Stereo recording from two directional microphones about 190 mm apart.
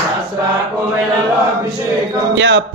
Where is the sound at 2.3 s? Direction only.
70° right (ahead or behind).